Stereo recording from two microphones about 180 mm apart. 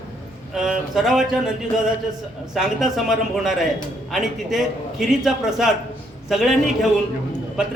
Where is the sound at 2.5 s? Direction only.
Centre (ahead or behind).